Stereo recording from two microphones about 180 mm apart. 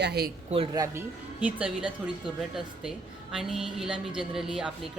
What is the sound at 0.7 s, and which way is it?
Speech, 20° right (ahead or behind).